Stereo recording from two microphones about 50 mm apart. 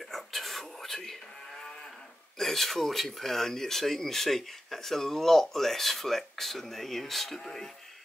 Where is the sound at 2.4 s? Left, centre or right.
Centre.